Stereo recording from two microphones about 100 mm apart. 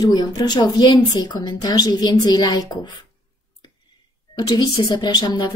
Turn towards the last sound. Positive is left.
turn(degrees=45)  # may be behind; listen again after turning